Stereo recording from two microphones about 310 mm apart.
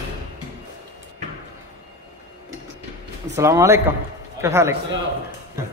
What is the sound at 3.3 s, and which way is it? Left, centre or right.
A man's voice, centre.